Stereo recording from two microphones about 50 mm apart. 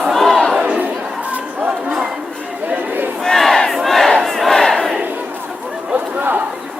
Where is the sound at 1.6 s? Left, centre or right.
Centre.